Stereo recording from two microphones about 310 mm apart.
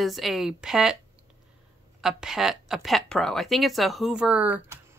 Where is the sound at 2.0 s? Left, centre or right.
Centre.